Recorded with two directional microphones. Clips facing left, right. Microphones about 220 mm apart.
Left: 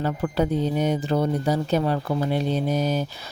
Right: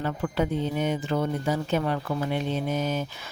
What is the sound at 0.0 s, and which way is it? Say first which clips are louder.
Speech: left 3 dB; 35° left (ahead or behind).